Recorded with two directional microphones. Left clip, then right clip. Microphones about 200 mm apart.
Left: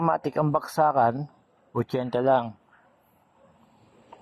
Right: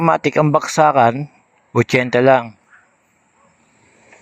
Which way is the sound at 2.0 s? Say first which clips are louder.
Right 9 dB; 45° right (ahead or behind).